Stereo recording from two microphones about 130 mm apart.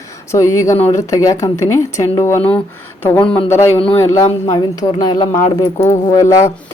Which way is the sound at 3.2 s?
45° left (ahead or behind).